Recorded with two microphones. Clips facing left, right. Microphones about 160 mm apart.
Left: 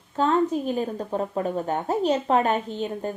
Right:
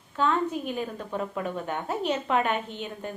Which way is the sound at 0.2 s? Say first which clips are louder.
Left 4 dB; 35° left (ahead or behind).